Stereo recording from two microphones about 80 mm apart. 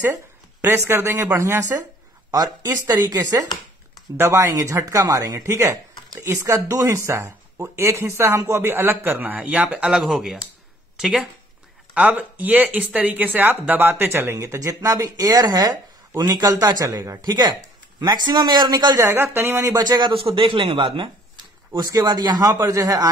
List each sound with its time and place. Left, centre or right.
0.7 s a man's voice: right
4.2 s a man's voice: right
5.4 s speech: right; by 9.9 s centre
9.9 s a man's voice: centre; by 17.3 s right
17.3 s a sound: right
18.0 s a man's voice: right
19.1 s speech: right
19.8 s a man's voice: right
21.7 s a man's voice: right